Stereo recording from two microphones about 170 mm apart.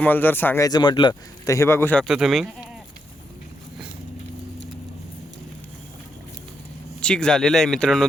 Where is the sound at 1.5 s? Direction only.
15° left (ahead or behind).